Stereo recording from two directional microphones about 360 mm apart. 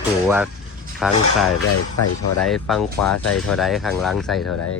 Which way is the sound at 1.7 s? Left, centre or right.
Left.